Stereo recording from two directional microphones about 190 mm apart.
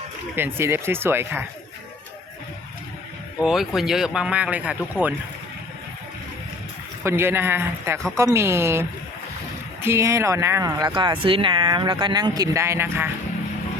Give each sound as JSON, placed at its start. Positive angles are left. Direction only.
{"t": 0.3, "sound": "speech", "side_deg": -10}
{"t": 3.4, "sound": "speech", "side_deg": 0}
{"t": 7.0, "sound": "speech", "side_deg": -15}